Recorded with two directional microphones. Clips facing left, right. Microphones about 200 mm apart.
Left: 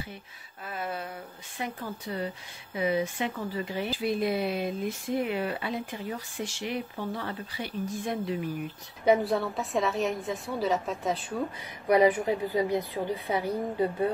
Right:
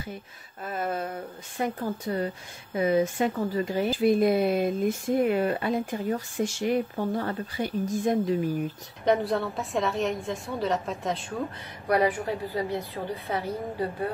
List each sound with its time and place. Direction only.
0.7 s a sound: 45° right (ahead or behind)
1.6 s speech: 45° right (ahead or behind)
9.0 s a woman's voice: centre (ahead or behind)
11.9 s a woman's voice: 20° left (ahead or behind)